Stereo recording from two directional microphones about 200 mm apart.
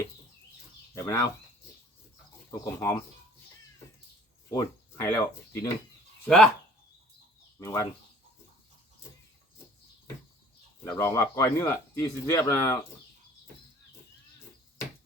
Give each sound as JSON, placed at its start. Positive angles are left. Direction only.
{"t": 0.9, "sound": "speech", "side_deg": 15}
{"t": 2.5, "sound": "speech", "side_deg": 15}
{"t": 4.4, "sound": "speech", "side_deg": 15}
{"t": 6.2, "sound": "speech", "side_deg": 5}
{"t": 7.6, "sound": "speech", "side_deg": 15}
{"t": 10.8, "sound": "speech", "side_deg": 15}